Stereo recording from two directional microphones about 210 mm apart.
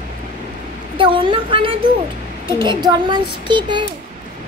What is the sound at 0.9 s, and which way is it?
A woman's voice, 25° right (ahead or behind).